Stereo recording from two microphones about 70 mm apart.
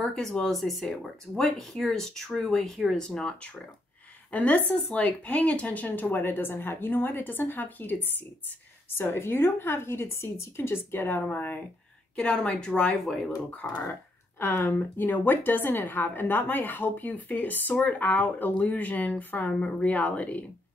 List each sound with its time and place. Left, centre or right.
0.0 s speech: centre
4.3 s a woman's voice: left
12.2 s speech: centre
13.0 s speech: centre
13.5 s a woman's voice: left
14.4 s a woman's voice: left